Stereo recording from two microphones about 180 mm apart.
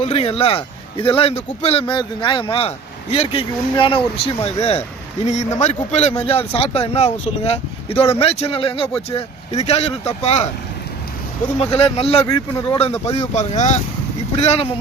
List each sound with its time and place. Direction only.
0.0 s speech: 35° left (ahead or behind)
5.2 s speech: 40° left (ahead or behind)
11.6 s speech: 35° left (ahead or behind)